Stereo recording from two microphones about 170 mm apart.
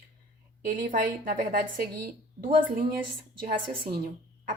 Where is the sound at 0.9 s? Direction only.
55° right (ahead or behind).